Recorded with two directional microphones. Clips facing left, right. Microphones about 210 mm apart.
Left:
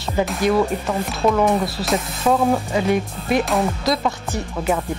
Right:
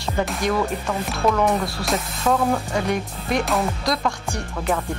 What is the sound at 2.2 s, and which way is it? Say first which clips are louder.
Speech: left 3 dB; 15° left (ahead or behind).